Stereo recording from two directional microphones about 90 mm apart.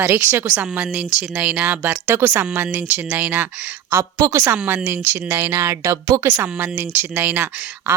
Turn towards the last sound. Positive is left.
turn(degrees=-15)  # may be behind; listen again after turning